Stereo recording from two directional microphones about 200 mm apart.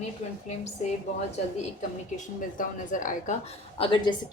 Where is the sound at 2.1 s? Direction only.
40° left (ahead or behind).